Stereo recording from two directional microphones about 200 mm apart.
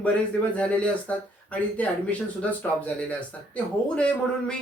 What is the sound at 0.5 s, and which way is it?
Speech, 5° left (ahead or behind).